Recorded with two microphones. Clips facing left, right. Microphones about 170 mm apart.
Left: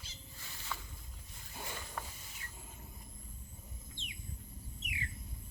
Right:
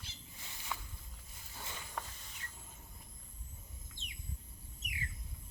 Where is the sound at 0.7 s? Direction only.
15° right (ahead or behind).